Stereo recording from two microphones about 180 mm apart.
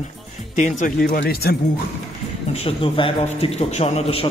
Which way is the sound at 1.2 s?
60° left (ahead or behind).